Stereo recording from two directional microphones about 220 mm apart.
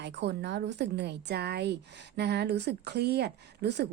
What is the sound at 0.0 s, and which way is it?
A woman's voice, 50° right (ahead or behind).